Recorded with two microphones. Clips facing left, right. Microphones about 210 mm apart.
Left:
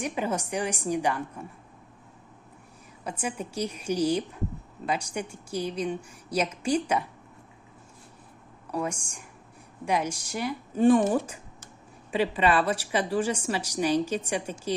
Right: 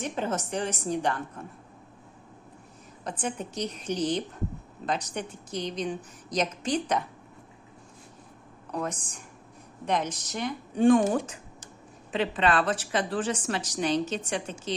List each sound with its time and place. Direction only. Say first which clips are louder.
0.0 s a woman's voice: left 1 dB; 10° left (ahead or behind)
3.0 s a woman's voice: even; 10° left (ahead or behind)
8.7 s a woman's voice: left 2 dB; 10° left (ahead or behind)